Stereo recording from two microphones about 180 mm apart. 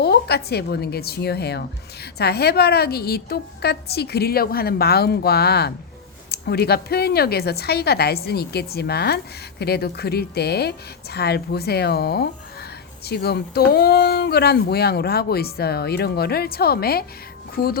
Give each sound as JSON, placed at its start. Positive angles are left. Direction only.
{"t": 0.0, "sound": "a woman's voice", "side_deg": 65}